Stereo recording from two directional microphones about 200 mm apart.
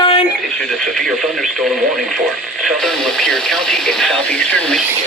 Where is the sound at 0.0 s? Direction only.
30° left (ahead or behind).